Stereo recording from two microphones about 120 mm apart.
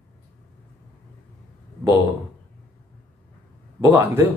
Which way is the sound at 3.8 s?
20° right (ahead or behind).